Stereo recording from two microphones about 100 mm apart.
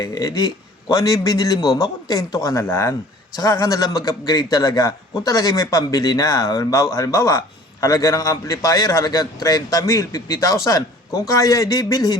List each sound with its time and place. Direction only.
0.0 s a man's voice: 35° left (ahead or behind)